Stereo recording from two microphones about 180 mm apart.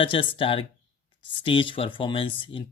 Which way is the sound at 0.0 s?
30° left (ahead or behind).